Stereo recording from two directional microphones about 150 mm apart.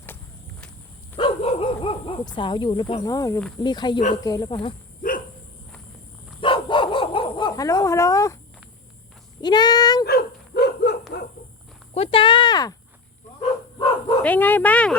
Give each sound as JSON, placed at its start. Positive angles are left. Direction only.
{"t": 1.1, "sound": "dog", "side_deg": 40}
{"t": 3.0, "sound": "speech", "side_deg": 25}
{"t": 6.4, "sound": "dog", "side_deg": 35}
{"t": 9.4, "sound": "a sound", "side_deg": 30}
{"t": 10.1, "sound": "dog", "side_deg": 90}
{"t": 11.9, "sound": "a sound", "side_deg": 35}
{"t": 14.2, "sound": "speech", "side_deg": 10}